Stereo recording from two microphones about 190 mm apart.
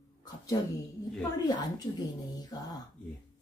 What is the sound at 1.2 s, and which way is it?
Speech, 20° left (ahead or behind).